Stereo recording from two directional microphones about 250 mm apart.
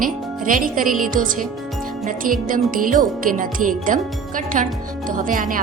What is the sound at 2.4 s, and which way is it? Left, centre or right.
A woman's voice, right.